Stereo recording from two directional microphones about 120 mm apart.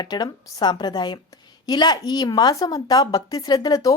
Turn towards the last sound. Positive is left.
turn(degrees=30)  # may be behind; listen again after turning